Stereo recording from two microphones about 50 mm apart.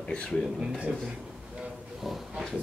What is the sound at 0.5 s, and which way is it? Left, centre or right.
Speech, right.